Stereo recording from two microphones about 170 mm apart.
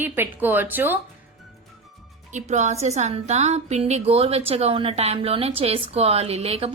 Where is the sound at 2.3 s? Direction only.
45° right (ahead or behind).